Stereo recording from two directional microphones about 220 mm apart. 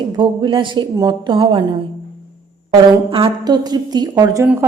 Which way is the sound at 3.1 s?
20° right (ahead or behind).